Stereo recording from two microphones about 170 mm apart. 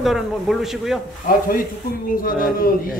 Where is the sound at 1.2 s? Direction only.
55° left (ahead or behind).